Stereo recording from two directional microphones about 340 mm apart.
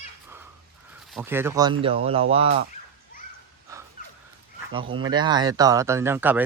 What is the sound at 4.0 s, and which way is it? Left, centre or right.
Dog, left.